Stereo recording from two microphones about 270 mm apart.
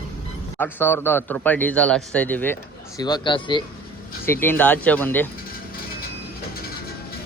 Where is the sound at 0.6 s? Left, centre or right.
Centre.